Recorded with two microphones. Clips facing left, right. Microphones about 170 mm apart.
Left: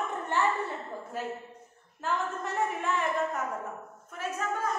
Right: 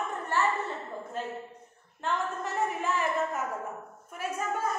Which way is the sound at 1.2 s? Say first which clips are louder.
Left 1 dB; 10° left (ahead or behind).